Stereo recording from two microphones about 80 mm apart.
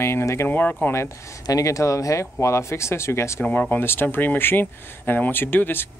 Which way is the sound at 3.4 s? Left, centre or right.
Centre.